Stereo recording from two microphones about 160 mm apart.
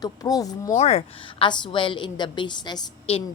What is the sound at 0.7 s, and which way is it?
A woman's voice, 40° left (ahead or behind).